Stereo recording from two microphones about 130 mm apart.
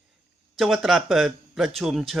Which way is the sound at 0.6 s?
Centre (ahead or behind).